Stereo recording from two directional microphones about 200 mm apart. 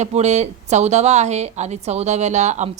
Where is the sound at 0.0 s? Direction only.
35° right (ahead or behind).